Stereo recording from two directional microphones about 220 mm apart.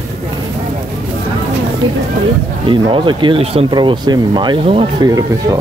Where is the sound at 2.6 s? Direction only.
20° right (ahead or behind).